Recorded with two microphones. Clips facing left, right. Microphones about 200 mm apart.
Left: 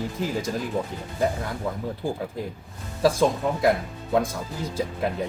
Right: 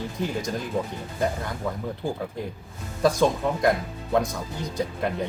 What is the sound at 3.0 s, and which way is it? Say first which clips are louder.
Speech: even; 5° left (ahead or behind).